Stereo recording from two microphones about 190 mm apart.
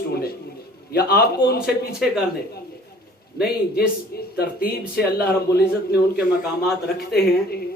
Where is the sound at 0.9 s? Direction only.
55° left (ahead or behind).